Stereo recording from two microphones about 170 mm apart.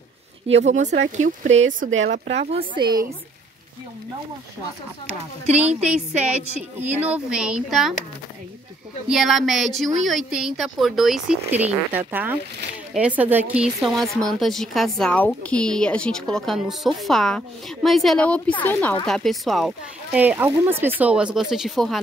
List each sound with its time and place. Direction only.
0.7 s speech: 45° right (ahead or behind)
2.3 s a woman's voice: 40° right (ahead or behind)
5.6 s a woman's voice: 5° right (ahead or behind)
9.0 s a woman's voice: centre (ahead or behind)
20.2 s a woman's voice: 10° right (ahead or behind)